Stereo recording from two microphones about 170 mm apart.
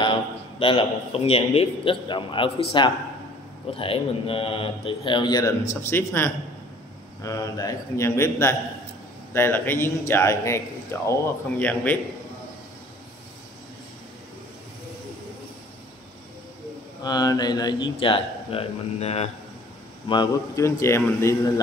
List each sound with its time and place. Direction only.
0.0 s a man's voice: 30° left (ahead or behind); by 12.0 s 10° left (ahead or behind)
17.0 s speech: 25° left (ahead or behind); by 19.2 s 40° left (ahead or behind)
20.1 s a man's voice: 20° left (ahead or behind)